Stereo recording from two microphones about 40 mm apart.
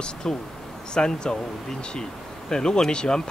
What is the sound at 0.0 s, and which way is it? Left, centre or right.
Speech, centre.